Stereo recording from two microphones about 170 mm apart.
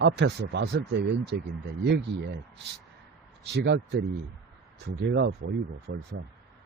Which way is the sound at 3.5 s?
80° right.